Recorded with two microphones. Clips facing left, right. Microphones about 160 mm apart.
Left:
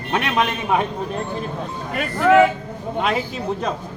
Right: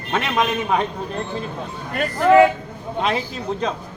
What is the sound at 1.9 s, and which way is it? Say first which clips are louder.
Speech: right 1 dB; centre (ahead or behind).